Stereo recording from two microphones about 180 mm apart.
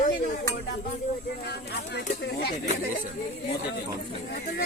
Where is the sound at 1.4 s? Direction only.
65° left (ahead or behind).